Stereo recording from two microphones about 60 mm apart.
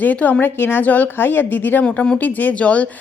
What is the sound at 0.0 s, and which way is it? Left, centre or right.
A woman's voice, left.